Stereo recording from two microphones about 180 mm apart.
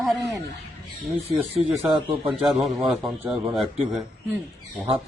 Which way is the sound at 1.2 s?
35° right (ahead or behind).